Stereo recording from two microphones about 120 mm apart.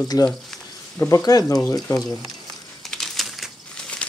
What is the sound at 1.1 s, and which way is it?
Speech, 30° left (ahead or behind).